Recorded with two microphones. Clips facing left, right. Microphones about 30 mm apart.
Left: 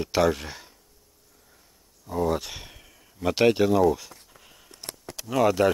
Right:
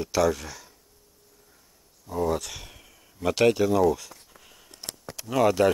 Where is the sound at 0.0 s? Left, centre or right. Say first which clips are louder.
Left 1 dB; left.